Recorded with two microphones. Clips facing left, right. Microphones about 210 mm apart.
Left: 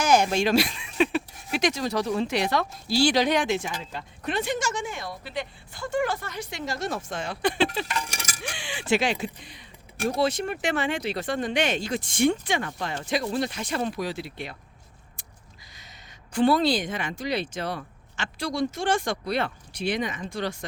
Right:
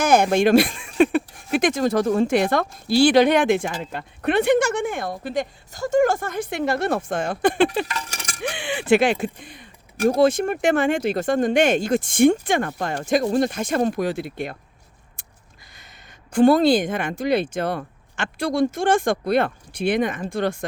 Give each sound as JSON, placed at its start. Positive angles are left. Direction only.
{"t": 0.0, "sound": "speech", "side_deg": -55}
{"t": 15.7, "sound": "speech", "side_deg": -55}